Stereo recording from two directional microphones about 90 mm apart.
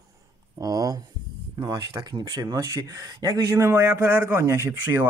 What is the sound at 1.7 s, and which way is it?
Speech, 45° right (ahead or behind).